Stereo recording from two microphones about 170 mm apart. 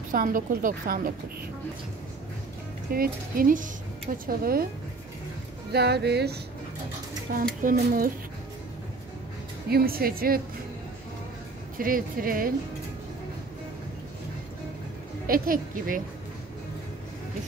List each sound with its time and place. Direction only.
0.1 s a woman's voice: 55° right (ahead or behind)
2.9 s a woman's voice: 60° right (ahead or behind)
5.7 s speech: 75° right (ahead or behind)
7.3 s a woman's voice: 55° right (ahead or behind)
9.7 s a woman's voice: 60° right (ahead or behind)
11.8 s a woman's voice: 55° right (ahead or behind)
15.2 s a woman's voice: 55° right (ahead or behind)